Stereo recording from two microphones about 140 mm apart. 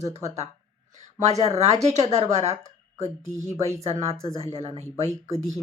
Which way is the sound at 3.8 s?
50° right (ahead or behind).